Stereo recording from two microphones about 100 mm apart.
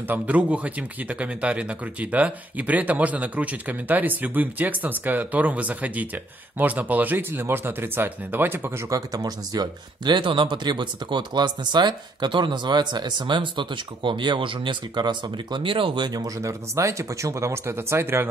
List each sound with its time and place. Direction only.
0.1 s speech: 15° right (ahead or behind)